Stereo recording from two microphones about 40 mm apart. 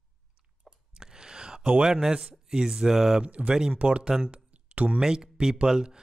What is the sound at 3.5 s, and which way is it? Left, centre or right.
Speech, centre.